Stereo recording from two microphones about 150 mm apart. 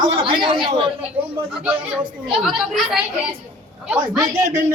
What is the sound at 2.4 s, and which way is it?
Speech, 5° right (ahead or behind).